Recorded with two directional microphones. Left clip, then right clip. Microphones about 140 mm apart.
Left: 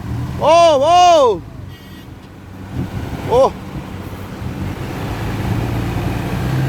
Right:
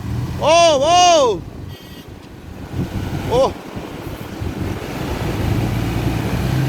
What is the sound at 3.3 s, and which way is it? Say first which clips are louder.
Speech: left 4 dB; 25° left (ahead or behind).